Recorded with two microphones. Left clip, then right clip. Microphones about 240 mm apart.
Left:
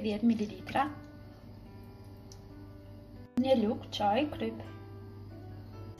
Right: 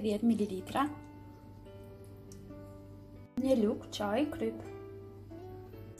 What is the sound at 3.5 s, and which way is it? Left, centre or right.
Speech, centre.